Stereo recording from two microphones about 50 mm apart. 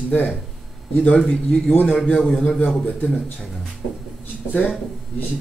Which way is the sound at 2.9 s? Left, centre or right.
Left.